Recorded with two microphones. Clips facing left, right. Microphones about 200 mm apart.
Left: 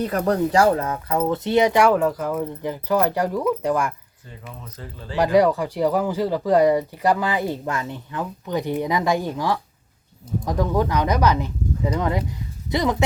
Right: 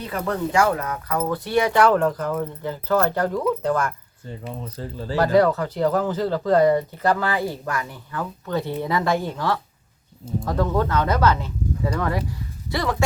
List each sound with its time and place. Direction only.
0.0 s speech: 40° left (ahead or behind); by 3.9 s 15° left (ahead or behind)
4.4 s speech: 30° right (ahead or behind)
5.1 s speech: 15° left (ahead or behind)